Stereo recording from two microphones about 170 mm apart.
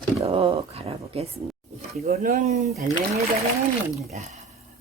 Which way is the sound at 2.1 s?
50° right (ahead or behind).